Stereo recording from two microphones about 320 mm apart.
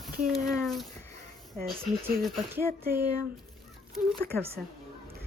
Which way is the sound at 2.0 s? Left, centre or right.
Centre.